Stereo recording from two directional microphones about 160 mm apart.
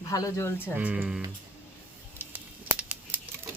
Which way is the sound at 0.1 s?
20° left (ahead or behind).